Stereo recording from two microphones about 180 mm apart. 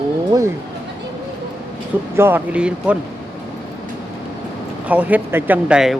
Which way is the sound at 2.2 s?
10° right (ahead or behind).